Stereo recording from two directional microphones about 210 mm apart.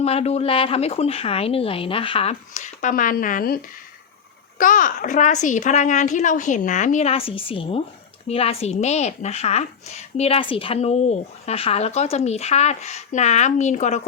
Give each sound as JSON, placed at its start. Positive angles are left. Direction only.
{"t": 0.0, "sound": "a woman's voice", "side_deg": 30}